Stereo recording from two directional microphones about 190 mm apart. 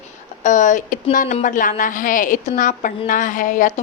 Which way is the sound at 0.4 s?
40° left (ahead or behind).